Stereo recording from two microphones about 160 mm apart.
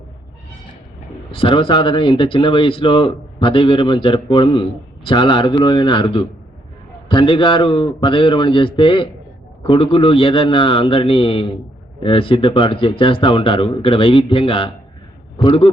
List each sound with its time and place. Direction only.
1.3 s speech: 30° left (ahead or behind)